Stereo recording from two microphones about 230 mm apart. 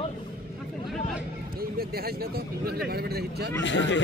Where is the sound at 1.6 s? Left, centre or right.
Right.